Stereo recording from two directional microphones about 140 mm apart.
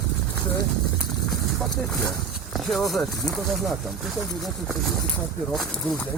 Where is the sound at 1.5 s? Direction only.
Centre (ahead or behind).